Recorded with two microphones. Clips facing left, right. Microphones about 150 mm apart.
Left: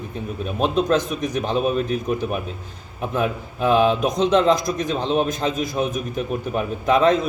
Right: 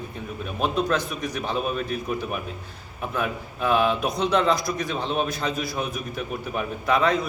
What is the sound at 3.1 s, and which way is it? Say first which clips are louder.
A man's voice: left 5 dB; 25° left (ahead or behind).